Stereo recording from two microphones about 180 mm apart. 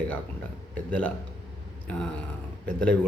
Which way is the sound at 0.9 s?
5° left (ahead or behind).